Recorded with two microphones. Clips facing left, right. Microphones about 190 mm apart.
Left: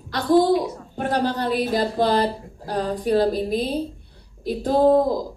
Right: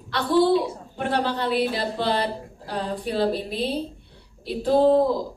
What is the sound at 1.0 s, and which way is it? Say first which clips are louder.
Speech: left 2 dB; 40° left (ahead or behind).